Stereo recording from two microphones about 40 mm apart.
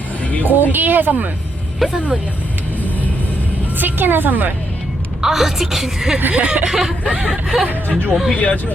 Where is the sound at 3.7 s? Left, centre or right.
Right.